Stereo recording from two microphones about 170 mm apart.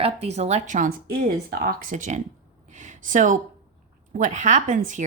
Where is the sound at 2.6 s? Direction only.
45° right (ahead or behind).